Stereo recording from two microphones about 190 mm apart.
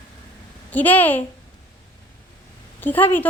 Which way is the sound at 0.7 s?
10° left (ahead or behind).